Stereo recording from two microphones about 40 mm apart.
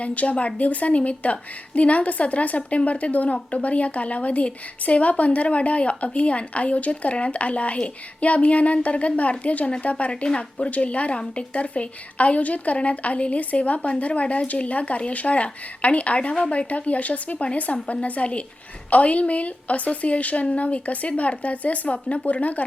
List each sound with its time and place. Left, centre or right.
0.0 s a woman's voice: left
10.1 s a woman's voice: left
21.9 s speech: left
22.3 s a woman's voice: left